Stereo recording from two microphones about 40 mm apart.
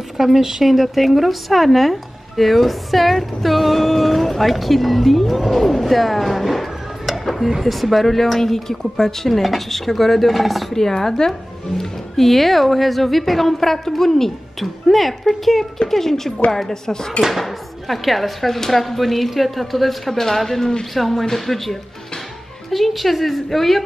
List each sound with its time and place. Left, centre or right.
0.2 s speech: centre
11.8 s speech: centre
17.3 s speech: centre